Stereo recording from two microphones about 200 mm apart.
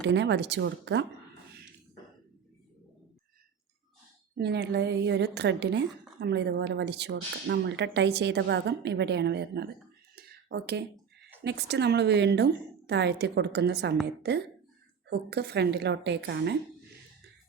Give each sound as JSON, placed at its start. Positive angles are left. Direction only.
{"t": 0.0, "sound": "a woman's voice", "side_deg": -60}
{"t": 4.4, "sound": "a woman's voice", "side_deg": -55}
{"t": 10.2, "sound": "a sound", "side_deg": -55}
{"t": 11.4, "sound": "a woman's voice", "side_deg": -55}